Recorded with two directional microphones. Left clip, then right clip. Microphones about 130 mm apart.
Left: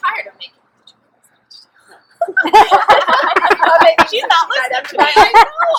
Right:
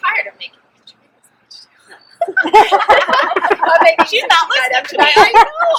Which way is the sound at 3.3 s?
40° left (ahead or behind).